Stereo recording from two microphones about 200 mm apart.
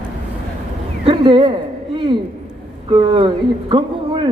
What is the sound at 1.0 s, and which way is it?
Speech, 25° right (ahead or behind).